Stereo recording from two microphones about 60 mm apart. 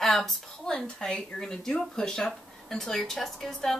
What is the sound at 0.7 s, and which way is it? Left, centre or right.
Speech, centre.